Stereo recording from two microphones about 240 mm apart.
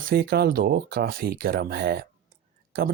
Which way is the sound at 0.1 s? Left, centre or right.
Right.